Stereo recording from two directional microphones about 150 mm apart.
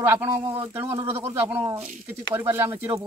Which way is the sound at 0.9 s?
20° right (ahead or behind).